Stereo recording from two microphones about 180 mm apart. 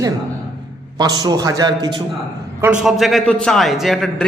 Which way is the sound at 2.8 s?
Centre (ahead or behind).